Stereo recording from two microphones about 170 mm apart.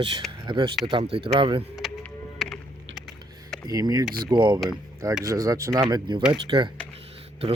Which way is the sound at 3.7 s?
20° right (ahead or behind).